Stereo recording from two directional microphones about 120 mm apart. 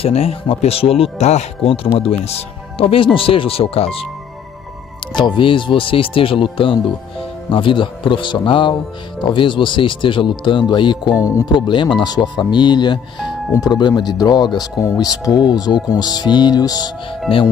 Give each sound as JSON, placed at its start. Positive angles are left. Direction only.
{"t": 0.0, "sound": "speech", "side_deg": 60}
{"t": 5.1, "sound": "speech", "side_deg": 40}
{"t": 11.1, "sound": "speech", "side_deg": 30}